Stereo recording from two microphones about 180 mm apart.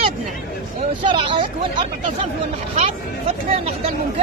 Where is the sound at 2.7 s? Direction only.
35° right (ahead or behind).